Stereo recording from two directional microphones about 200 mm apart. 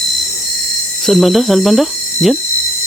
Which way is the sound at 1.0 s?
Centre (ahead or behind).